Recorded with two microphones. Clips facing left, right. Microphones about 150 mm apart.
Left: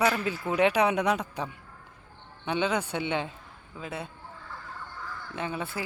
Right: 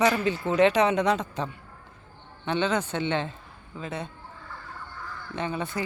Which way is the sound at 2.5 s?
10° left (ahead or behind).